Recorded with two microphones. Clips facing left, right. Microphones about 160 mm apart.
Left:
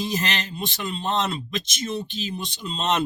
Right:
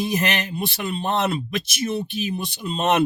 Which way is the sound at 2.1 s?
60° right (ahead or behind).